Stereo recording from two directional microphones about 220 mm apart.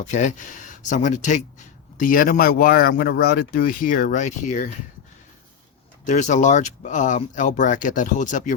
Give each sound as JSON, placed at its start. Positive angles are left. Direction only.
{"t": 0.0, "sound": "speech", "side_deg": 35}
{"t": 6.1, "sound": "speech", "side_deg": 35}